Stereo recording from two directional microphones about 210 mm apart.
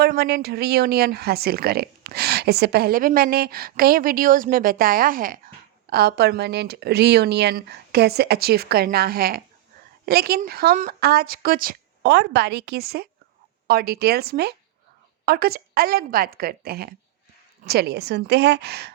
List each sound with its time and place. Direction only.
0.0 s speech: 50° right (ahead or behind)